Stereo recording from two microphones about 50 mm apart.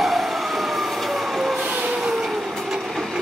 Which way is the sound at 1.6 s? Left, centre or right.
Right.